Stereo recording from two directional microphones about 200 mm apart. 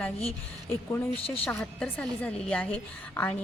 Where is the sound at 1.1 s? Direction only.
30° left (ahead or behind).